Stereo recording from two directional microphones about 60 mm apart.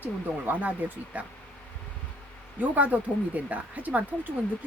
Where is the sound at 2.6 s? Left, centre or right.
Right.